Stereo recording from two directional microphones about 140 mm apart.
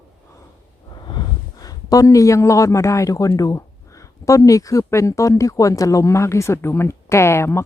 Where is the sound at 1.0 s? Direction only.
30° left (ahead or behind).